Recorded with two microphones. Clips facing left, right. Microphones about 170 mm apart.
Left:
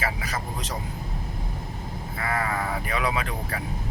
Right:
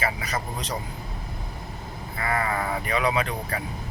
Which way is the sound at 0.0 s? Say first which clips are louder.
Right 2 dB; centre (ahead or behind).